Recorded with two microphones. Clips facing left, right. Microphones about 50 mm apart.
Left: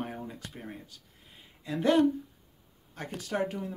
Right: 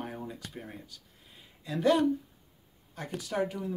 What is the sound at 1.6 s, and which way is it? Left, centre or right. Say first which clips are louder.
Speech: left 1 dB; left.